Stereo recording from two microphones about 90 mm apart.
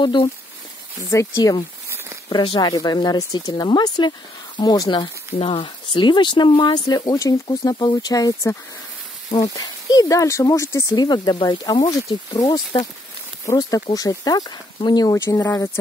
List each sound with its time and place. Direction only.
0.0 s speech: 60° left (ahead or behind)
1.1 s speech: 40° left (ahead or behind)
2.3 s speech: 55° left (ahead or behind)
5.4 s speech: 70° left (ahead or behind); by 11.0 s 35° left (ahead or behind)
11.0 s speech: 50° left (ahead or behind)
15.1 s speech: 30° left (ahead or behind)